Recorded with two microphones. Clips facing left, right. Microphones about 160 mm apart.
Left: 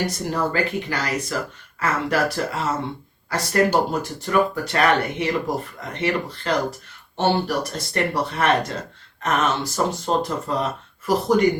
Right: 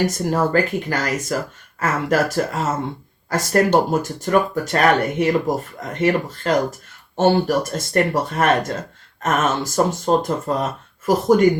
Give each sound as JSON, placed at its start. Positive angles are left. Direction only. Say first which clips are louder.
{"t": 0.0, "sound": "speech", "louder": "right 4 dB", "side_deg": -45}